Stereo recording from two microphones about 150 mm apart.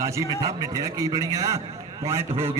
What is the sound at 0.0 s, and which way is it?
A man's voice, 20° right (ahead or behind).